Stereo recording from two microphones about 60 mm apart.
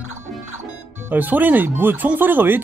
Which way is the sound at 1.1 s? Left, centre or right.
Right.